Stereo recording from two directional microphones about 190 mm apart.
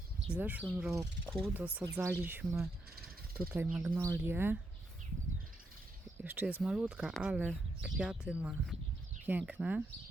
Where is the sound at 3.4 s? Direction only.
10° right (ahead or behind).